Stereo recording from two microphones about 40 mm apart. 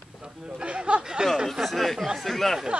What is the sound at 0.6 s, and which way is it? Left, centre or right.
Speech, right.